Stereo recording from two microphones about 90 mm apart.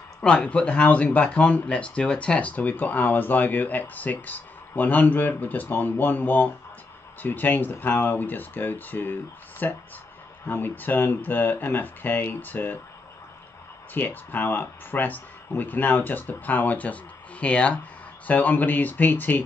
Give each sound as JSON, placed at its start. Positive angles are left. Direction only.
{"t": 0.2, "sound": "speech", "side_deg": 10}
{"t": 13.9, "sound": "speech", "side_deg": 20}